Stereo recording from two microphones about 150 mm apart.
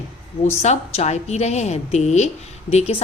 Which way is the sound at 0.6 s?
45° left (ahead or behind).